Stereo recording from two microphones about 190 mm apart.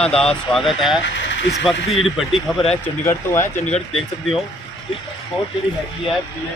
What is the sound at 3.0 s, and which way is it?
Speech, 15° left (ahead or behind).